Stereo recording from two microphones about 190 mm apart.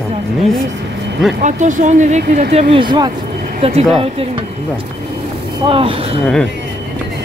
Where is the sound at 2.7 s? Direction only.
25° right (ahead or behind).